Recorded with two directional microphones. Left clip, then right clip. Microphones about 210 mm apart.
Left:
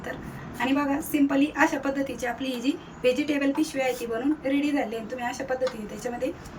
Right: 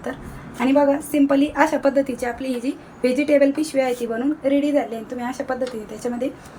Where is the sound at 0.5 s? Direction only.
25° right (ahead or behind).